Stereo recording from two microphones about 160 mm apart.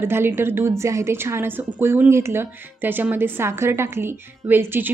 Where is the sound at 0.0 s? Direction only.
15° right (ahead or behind).